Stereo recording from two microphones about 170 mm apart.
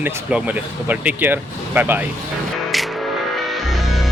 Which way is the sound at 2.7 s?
Centre (ahead or behind).